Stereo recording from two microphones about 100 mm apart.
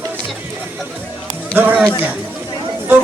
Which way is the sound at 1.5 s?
20° right (ahead or behind).